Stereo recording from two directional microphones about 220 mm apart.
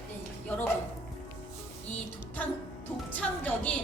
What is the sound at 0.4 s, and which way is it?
Music, 5° left (ahead or behind).